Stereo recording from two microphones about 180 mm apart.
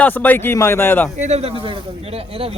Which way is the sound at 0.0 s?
10° left (ahead or behind).